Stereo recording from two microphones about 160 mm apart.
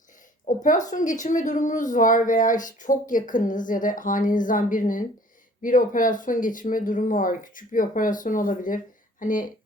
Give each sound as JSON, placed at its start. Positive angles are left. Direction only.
{"t": 0.4, "sound": "a woman's voice", "side_deg": 50}